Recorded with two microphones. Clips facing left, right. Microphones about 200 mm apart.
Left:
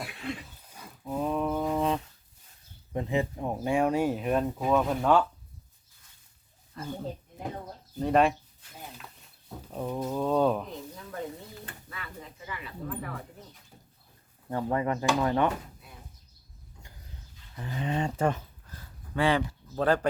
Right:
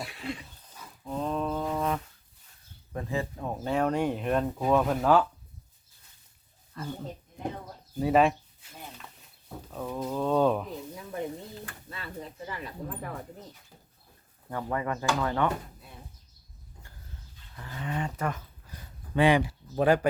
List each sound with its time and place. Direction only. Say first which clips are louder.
0.2 s cough: even; centre (ahead or behind)
0.7 s dog: left 1 dB; 10° left (ahead or behind)
2.9 s speech: left 3 dB; 20° left (ahead or behind); by 5.2 s centre (ahead or behind)
6.7 s speech: even; 10° left (ahead or behind)
7.9 s speech: right 1 dB; 5° right (ahead or behind)
9.7 s speech: left 1 dB; 10° left (ahead or behind)
10.9 s speech: right 4 dB; 15° right (ahead or behind)
12.5 s speech: left 4 dB; 40° right (ahead or behind)
14.5 s speech: left 3 dB; 25° left (ahead or behind)
17.6 s speech: left 3 dB; 20° left (ahead or behind)
18.7 s a sound: right 4 dB; 15° right (ahead or behind)